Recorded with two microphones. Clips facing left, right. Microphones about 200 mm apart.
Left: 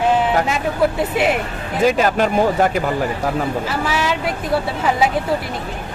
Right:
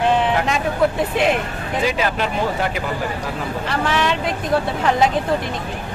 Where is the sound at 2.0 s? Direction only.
45° left (ahead or behind).